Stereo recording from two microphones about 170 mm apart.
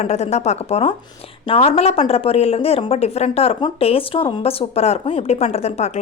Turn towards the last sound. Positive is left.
turn(degrees=40)  # may be behind; listen again after turning